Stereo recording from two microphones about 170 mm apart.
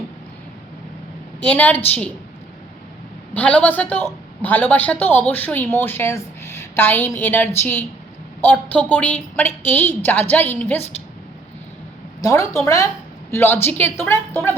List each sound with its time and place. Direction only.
1.4 s a woman's voice: 10° left (ahead or behind)
3.3 s a woman's voice: 10° left (ahead or behind)
12.2 s a woman's voice: 20° left (ahead or behind)